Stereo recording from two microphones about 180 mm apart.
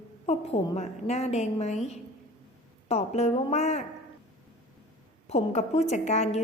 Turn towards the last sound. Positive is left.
turn(degrees=40)  # may be behind; listen again after turning